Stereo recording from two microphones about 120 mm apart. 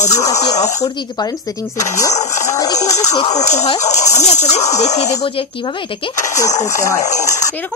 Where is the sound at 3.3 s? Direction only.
70° left (ahead or behind).